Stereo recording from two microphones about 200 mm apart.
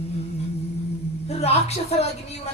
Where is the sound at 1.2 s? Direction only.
30° left (ahead or behind).